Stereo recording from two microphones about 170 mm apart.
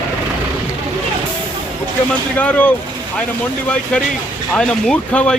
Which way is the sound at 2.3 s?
10° left (ahead or behind).